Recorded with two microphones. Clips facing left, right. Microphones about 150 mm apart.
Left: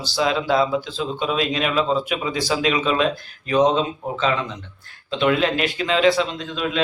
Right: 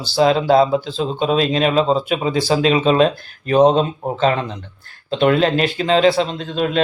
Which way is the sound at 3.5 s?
45° right (ahead or behind).